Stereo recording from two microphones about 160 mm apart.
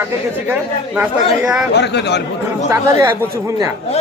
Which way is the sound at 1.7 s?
90° left.